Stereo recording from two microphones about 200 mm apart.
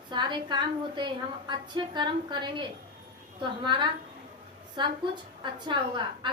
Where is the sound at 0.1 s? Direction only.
20° right (ahead or behind).